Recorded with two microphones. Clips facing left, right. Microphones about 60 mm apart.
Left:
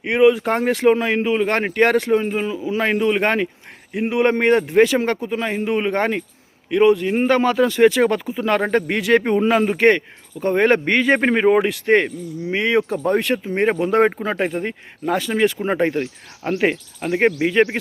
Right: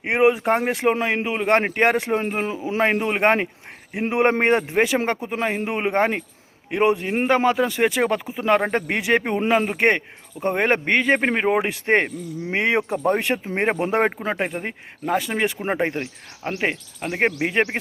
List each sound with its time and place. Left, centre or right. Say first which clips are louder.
0.1 s a man's voice: left 3 dB; right
0.5 s speech: left 4 dB; centre
2.3 s a man's voice: left 2 dB; right
4.7 s speech: left 6 dB; centre
5.2 s a man's voice: left 2 dB; right
7.3 s speech: left 1 dB; centre
9.7 s a man's voice: left 4 dB; centre
14.3 s speech: left 4 dB; centre